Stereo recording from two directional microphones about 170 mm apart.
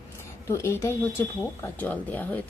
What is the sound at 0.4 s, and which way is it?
A woman's voice, 15° left (ahead or behind).